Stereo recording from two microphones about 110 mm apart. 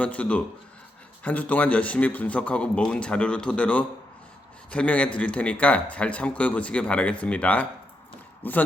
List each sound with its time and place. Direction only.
0.0 s speech: 10° left (ahead or behind)